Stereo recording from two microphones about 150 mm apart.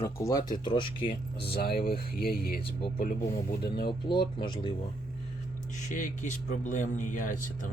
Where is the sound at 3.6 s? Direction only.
90° left.